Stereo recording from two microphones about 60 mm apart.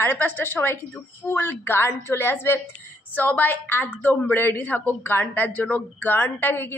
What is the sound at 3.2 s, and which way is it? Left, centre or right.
A woman's voice, left.